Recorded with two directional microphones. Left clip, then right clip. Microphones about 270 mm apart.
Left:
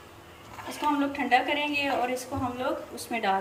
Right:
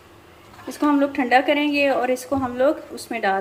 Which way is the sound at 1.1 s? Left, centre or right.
Centre.